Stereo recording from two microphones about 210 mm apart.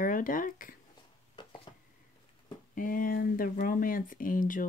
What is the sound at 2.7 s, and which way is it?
Speech, 40° left (ahead or behind).